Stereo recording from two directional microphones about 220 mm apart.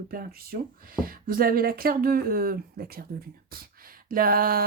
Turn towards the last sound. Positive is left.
turn(degrees=-40)  # may be behind; listen again after turning